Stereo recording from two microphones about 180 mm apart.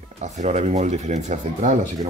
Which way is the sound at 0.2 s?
40° right (ahead or behind).